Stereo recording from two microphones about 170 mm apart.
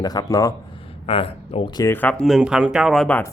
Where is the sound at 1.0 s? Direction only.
35° left (ahead or behind).